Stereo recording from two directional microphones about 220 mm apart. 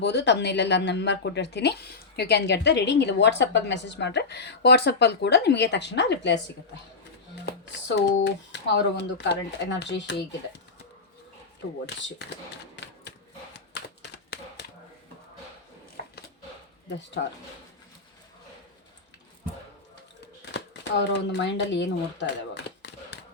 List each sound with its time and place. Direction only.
0.0 s speech: 50° left (ahead or behind)
7.4 s speech: 50° left (ahead or behind)
11.9 s speech: 55° left (ahead or behind)
12.7 s a sound: 50° left (ahead or behind)
16.9 s speech: 55° left (ahead or behind)
21.1 s speech: 50° left (ahead or behind)